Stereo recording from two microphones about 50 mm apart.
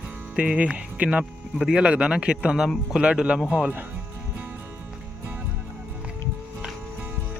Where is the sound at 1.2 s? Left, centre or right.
Centre.